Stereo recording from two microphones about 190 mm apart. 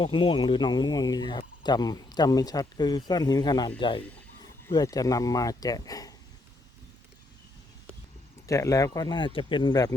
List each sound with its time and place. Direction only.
0.0 s speech: 25° left (ahead or behind)
8.4 s speech: 15° left (ahead or behind)